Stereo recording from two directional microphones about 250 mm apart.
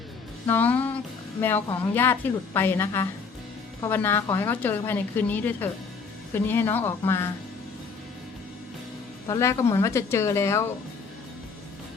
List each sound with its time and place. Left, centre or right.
0.4 s a woman's voice: centre
9.2 s a woman's voice: centre